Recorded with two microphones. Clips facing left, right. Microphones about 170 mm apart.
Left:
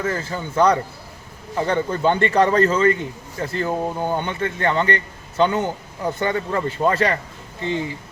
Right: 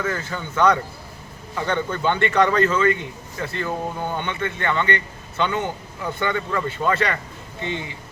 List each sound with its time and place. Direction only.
0.0 s a man's voice: 35° left (ahead or behind)